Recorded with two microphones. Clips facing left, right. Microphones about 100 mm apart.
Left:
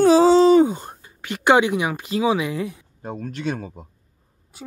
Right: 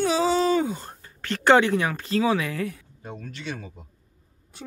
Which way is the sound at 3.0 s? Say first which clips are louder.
Left 9 dB; 45° left (ahead or behind).